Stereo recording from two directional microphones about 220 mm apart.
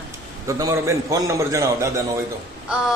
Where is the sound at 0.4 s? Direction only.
15° right (ahead or behind).